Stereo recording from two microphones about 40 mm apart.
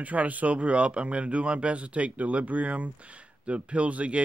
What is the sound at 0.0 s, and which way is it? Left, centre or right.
A man's voice, right.